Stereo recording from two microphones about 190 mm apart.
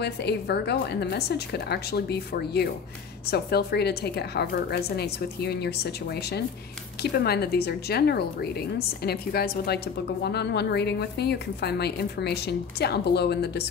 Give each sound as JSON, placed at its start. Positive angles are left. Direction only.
{"t": 0.0, "sound": "a woman's voice", "side_deg": 60}